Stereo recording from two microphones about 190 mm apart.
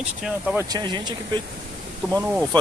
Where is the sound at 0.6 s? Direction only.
20° right (ahead or behind).